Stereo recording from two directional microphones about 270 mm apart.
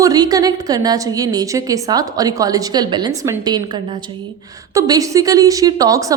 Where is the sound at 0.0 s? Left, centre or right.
Centre.